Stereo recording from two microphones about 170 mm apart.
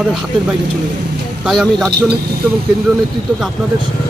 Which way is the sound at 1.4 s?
Centre (ahead or behind).